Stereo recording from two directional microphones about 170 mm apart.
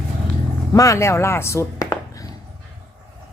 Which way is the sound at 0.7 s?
20° left (ahead or behind).